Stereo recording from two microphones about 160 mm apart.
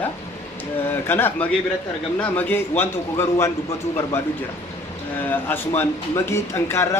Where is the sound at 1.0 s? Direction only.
15° left (ahead or behind).